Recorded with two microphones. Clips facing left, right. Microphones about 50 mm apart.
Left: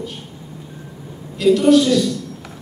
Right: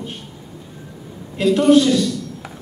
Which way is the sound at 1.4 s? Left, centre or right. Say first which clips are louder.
Left 3 dB; right.